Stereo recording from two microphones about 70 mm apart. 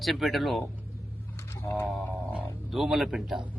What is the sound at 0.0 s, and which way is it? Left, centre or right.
Speech, centre.